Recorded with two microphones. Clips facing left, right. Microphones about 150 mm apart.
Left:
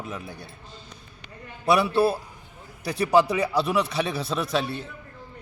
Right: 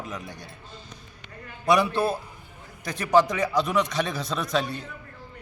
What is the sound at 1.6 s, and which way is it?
A man's voice, 5° left (ahead or behind).